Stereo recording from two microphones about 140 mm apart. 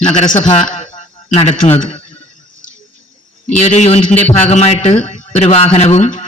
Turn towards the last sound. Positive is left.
turn(degrees=55)  # may be behind; listen again after turning